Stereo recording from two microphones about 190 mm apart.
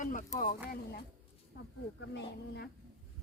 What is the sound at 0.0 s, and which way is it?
Speech, 45° left (ahead or behind).